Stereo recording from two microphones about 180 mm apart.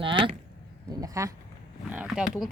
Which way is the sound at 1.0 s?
20° right (ahead or behind).